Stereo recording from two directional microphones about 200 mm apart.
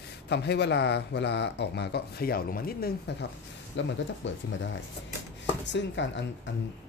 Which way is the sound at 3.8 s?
65° left (ahead or behind).